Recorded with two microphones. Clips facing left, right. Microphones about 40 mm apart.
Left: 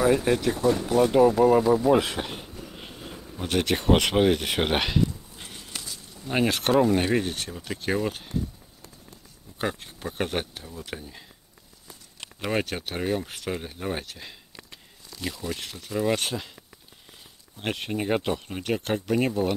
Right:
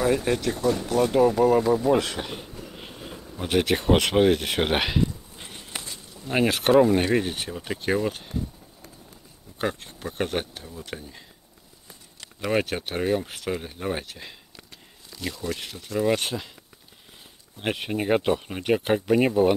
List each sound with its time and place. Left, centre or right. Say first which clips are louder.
0.0 s speech: left 1 dB; centre
5.7 s a sound: right 3 dB; right
6.1 s speech: right 1 dB; centre
9.6 s speech: right 1 dB; centre
12.4 s speech: right 3 dB; centre
17.6 s speech: right 2 dB; centre